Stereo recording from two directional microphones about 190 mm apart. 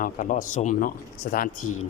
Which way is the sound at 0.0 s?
45° left (ahead or behind).